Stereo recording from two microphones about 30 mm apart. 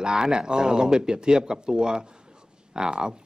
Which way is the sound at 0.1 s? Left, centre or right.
Right.